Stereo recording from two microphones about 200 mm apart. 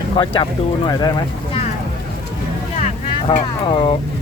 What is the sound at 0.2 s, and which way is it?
Speech, 25° left (ahead or behind).